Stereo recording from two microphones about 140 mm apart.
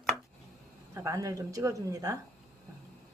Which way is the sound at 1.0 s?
20° right (ahead or behind).